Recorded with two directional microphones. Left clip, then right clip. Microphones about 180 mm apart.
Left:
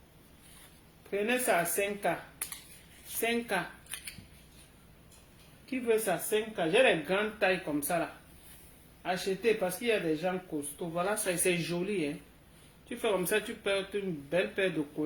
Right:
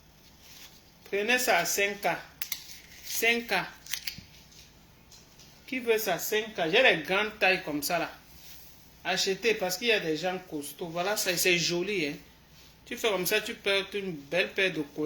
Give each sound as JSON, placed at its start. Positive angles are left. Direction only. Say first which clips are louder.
{"t": 1.1, "sound": "speech", "louder": "right 3 dB", "side_deg": 10}
{"t": 5.7, "sound": "speech", "louder": "right 2 dB", "side_deg": 10}
{"t": 9.0, "sound": "speech", "louder": "right 3 dB", "side_deg": 10}